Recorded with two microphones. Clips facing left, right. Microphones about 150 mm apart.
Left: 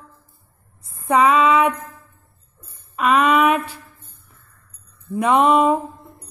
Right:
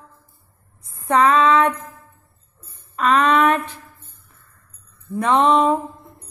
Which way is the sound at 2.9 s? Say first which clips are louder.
Even; 10° left (ahead or behind).